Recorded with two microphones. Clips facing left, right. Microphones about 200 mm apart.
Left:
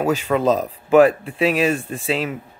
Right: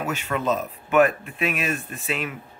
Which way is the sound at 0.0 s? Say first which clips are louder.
Left 8 dB; 35° left (ahead or behind).